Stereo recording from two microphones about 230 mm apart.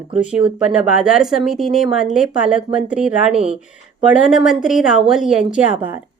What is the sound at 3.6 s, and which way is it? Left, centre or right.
Speech, centre.